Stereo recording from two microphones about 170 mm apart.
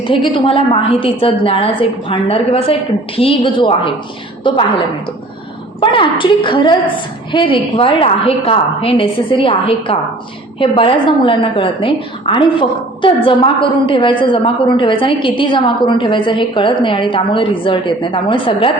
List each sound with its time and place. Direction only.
0.0 s a woman's voice: 30° left (ahead or behind)
5.8 s a woman's voice: 30° left (ahead or behind)